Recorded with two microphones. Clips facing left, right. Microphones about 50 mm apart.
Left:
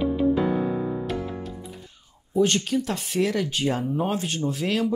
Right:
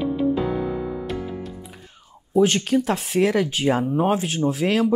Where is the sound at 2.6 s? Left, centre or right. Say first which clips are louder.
Right 5 dB; right.